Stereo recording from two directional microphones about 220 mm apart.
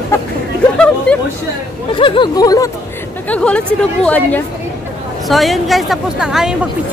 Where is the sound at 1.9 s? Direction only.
20° left (ahead or behind).